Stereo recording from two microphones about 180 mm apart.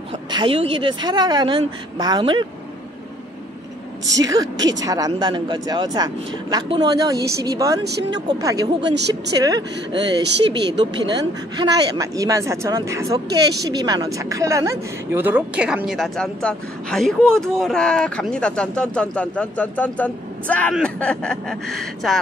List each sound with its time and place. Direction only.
0.3 s speech: 25° right (ahead or behind)
4.2 s speech: 20° right (ahead or behind); by 21.5 s 5° left (ahead or behind)